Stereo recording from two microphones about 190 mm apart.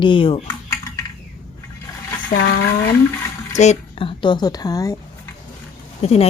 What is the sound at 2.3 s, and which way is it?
Speech, 55° left (ahead or behind).